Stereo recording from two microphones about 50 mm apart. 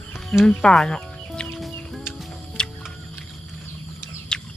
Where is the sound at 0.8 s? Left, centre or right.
Centre.